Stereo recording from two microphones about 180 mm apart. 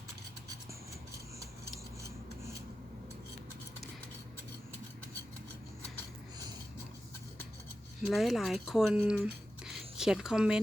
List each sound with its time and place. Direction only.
8.0 s speech: centre (ahead or behind)